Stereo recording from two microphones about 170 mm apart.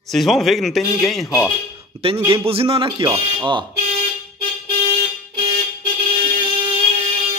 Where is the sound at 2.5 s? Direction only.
35° right (ahead or behind).